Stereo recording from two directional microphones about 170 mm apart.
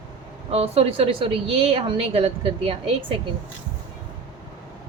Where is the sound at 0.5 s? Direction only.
35° right (ahead or behind).